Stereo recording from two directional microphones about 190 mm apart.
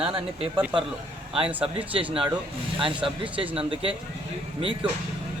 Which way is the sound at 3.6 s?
25° right (ahead or behind).